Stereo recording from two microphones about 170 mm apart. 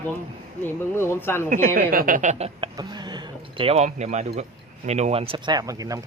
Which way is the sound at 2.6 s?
25° right (ahead or behind).